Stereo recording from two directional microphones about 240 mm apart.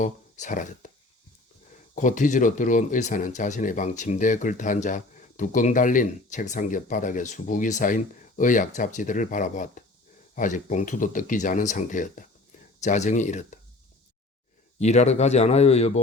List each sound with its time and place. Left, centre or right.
0.0 s speech: left
2.0 s speech: left
14.8 s speech: left